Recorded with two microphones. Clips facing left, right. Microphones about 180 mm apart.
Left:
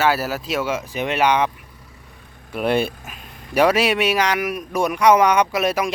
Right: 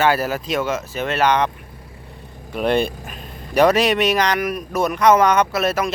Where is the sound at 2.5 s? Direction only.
5° left (ahead or behind).